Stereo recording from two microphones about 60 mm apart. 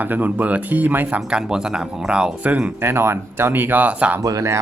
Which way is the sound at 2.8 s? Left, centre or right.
Right.